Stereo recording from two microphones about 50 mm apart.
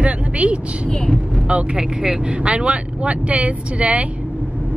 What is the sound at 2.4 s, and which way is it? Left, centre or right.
Speech, right.